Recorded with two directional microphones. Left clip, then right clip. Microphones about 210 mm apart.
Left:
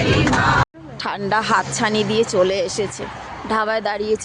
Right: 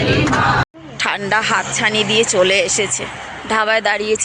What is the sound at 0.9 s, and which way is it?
Speech, 10° left (ahead or behind).